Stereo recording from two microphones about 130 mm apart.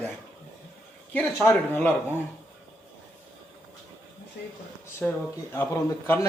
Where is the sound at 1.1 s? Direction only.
15° left (ahead or behind).